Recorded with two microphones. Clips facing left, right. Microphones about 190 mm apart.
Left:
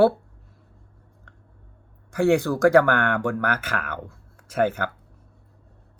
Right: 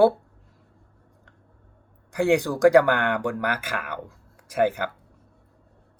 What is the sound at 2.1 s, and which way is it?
Speech, 15° right (ahead or behind).